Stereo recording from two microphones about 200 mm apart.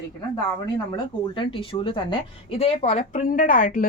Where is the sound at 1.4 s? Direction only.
25° left (ahead or behind).